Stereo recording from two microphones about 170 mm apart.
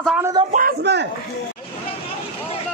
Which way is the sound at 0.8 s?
85° right.